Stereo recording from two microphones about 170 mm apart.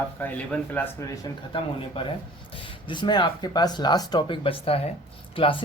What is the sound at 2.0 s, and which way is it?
Speech, 30° left (ahead or behind).